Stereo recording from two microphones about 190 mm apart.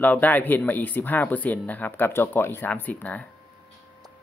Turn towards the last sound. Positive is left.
turn(degrees=10)  # may be behind; listen again after turning